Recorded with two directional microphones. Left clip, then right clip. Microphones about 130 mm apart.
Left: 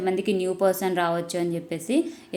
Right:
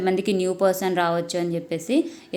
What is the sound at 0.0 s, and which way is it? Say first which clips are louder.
A woman's voice: right 2 dB; 25° right (ahead or behind).